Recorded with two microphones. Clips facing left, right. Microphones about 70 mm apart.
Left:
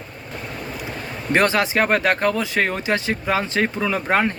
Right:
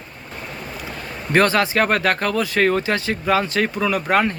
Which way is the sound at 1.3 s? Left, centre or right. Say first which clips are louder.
Right 1 dB; centre.